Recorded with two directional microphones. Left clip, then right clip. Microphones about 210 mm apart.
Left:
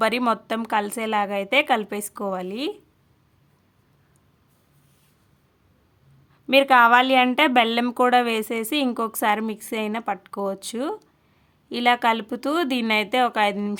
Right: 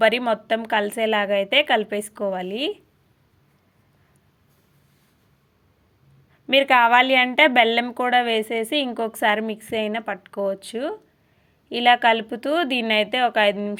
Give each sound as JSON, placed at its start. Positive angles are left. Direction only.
{"t": 0.0, "sound": "a woman's voice", "side_deg": 5}
{"t": 6.5, "sound": "a woman's voice", "side_deg": 0}